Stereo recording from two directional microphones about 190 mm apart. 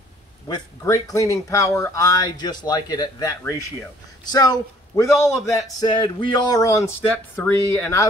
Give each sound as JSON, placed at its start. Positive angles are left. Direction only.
{"t": 0.5, "sound": "speech", "side_deg": 20}